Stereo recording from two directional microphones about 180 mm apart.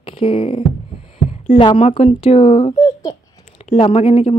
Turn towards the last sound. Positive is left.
turn(degrees=35)  # may be behind; listen again after turning